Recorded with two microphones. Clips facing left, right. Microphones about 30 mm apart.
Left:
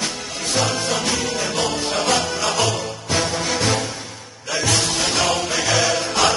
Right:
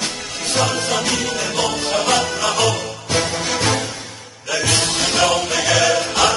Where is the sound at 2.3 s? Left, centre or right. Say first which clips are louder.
Right 2 dB; centre.